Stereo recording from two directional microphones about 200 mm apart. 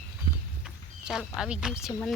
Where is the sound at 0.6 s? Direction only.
5° right (ahead or behind).